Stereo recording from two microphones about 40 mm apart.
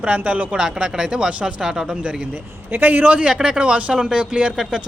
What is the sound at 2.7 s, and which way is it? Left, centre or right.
Speech, right.